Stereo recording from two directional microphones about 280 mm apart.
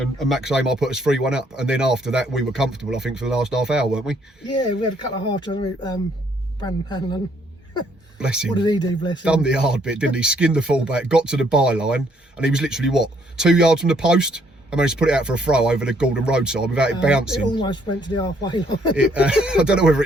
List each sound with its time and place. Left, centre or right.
0.2 s speech: centre
5.3 s speech: centre
8.2 s speech: centre
8.5 s speech: centre
9.2 s speech: centre
17.5 s speech: centre
18.9 s speech: centre